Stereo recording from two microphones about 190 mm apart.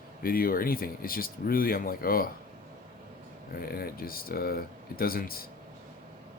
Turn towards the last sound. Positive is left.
turn(degrees=50)  # may be behind; listen again after turning